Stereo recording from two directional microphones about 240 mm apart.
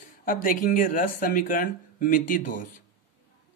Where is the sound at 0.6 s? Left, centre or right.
Left.